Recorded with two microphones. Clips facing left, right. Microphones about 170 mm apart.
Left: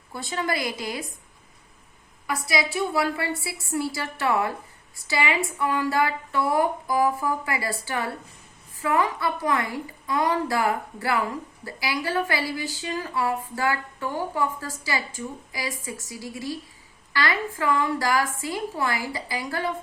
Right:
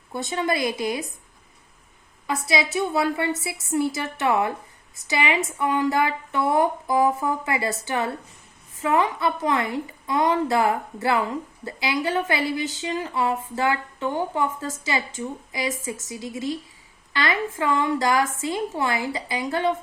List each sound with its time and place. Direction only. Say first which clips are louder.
0.1 s a woman's voice: right 3 dB; 20° right (ahead or behind)
2.2 s a woman's voice: right 2 dB; 25° right (ahead or behind)